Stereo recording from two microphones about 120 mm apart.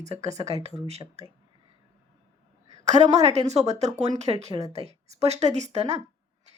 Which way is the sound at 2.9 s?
65° right (ahead or behind).